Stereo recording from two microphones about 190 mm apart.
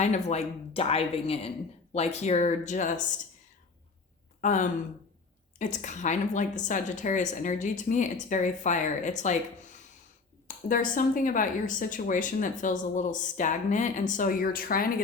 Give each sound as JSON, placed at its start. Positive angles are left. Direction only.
{"t": 0.0, "sound": "a woman's voice", "side_deg": 40}
{"t": 4.4, "sound": "a woman's voice", "side_deg": 40}